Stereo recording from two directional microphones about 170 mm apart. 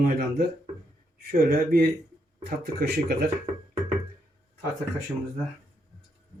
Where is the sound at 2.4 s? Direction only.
70° right (ahead or behind).